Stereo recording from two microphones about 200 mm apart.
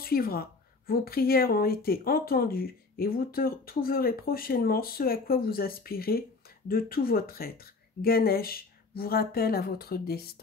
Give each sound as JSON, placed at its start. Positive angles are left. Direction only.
{"t": 0.0, "sound": "speech", "side_deg": 50}